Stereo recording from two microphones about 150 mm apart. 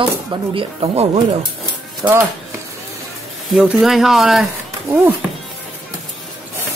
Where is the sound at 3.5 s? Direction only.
5° right (ahead or behind).